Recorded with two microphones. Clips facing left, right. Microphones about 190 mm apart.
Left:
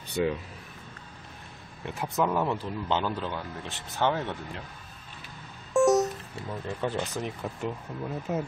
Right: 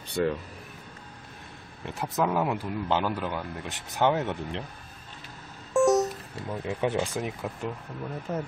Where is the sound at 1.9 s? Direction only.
Centre (ahead or behind); by 4.6 s 20° right (ahead or behind).